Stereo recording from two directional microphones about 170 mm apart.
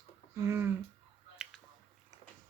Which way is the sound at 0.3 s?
15° right (ahead or behind).